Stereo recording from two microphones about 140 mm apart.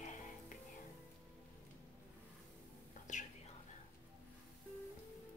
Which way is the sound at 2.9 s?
60° left (ahead or behind).